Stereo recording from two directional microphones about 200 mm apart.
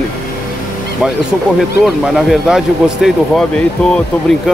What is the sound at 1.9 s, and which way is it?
Speech, centre (ahead or behind).